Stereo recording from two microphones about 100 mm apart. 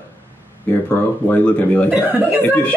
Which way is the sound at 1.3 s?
15° left (ahead or behind).